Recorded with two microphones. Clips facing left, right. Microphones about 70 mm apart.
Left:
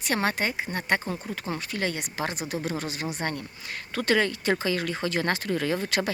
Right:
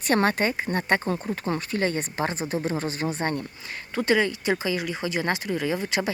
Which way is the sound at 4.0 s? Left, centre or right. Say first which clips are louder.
Right 2 dB; centre.